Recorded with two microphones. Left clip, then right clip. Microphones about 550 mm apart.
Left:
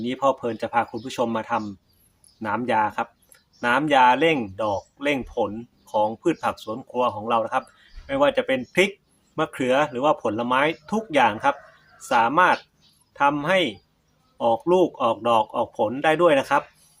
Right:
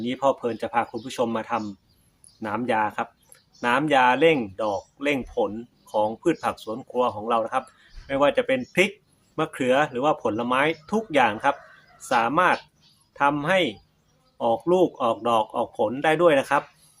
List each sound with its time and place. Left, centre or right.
0.0 s speech: left